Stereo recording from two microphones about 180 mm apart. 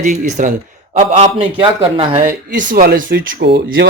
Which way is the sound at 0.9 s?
35° right (ahead or behind).